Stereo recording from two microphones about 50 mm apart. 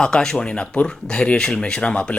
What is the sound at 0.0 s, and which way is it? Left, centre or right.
Speech, centre.